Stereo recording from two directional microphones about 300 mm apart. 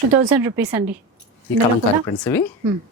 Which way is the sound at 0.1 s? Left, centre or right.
Centre.